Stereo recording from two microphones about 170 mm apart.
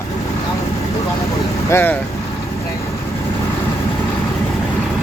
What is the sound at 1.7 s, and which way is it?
Speech, 10° left (ahead or behind).